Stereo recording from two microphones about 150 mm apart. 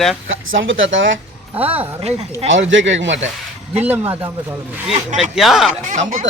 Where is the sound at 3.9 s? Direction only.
40° right (ahead or behind).